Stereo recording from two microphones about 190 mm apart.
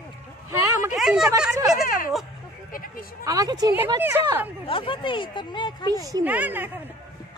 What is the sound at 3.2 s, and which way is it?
Speech, 20° right (ahead or behind).